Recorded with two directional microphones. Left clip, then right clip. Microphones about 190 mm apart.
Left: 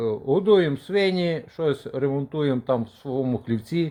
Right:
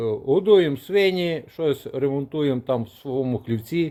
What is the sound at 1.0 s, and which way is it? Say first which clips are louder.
Speech: right 3 dB; 15° right (ahead or behind).